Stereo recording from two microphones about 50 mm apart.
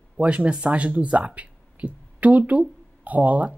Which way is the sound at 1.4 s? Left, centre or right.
Right.